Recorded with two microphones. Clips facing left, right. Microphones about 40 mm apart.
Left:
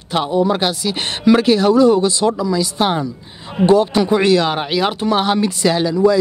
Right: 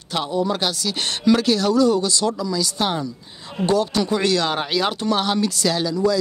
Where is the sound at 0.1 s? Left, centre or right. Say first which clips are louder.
Left 6 dB; left.